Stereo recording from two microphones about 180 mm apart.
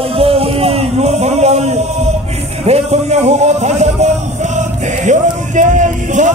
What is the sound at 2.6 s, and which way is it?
A man's voice, 35° right (ahead or behind).